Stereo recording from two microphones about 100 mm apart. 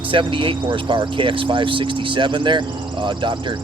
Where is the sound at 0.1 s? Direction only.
60° right (ahead or behind).